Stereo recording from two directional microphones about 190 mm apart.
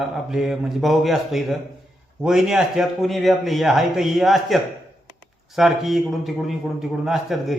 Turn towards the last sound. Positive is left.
turn(degrees=0)  # may be behind; listen again after turning